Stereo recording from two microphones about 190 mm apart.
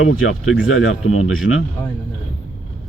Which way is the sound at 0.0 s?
90° left.